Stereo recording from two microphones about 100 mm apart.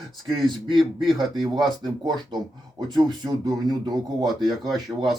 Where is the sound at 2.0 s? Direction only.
45° right (ahead or behind).